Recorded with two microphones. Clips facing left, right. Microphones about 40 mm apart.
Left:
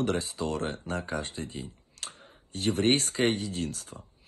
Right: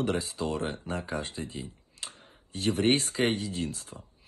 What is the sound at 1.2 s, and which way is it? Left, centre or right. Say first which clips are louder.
Speech: even; right.